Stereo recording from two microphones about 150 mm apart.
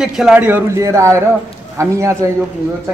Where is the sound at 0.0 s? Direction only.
5° right (ahead or behind); by 2.3 s 20° right (ahead or behind).